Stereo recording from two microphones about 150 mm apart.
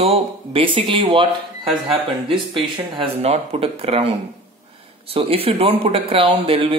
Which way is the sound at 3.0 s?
40° right (ahead or behind).